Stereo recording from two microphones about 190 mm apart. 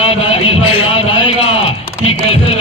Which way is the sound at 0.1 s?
30° left (ahead or behind).